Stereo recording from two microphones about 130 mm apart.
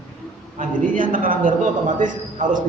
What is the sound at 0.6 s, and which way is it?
A man's voice, 90° right.